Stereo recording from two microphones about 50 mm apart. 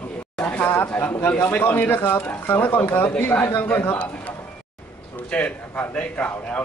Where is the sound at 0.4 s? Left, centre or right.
Left.